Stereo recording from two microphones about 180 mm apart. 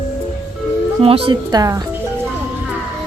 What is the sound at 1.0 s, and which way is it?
Speech, 30° right (ahead or behind).